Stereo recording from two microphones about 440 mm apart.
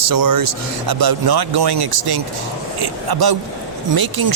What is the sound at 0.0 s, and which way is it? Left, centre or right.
Speech, right.